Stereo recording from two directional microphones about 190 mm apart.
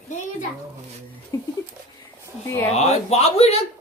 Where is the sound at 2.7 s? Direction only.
35° left (ahead or behind).